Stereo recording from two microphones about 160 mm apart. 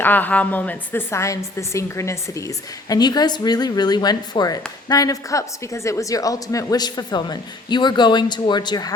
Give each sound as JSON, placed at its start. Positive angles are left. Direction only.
{"t": 0.0, "sound": "a woman's voice", "side_deg": 10}